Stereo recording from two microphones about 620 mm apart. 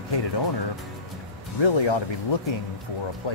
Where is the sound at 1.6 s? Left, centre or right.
Left.